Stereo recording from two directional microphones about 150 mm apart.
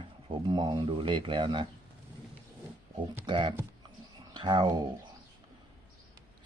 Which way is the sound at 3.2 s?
35° right (ahead or behind).